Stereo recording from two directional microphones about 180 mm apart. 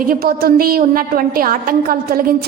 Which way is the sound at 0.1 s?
55° right (ahead or behind).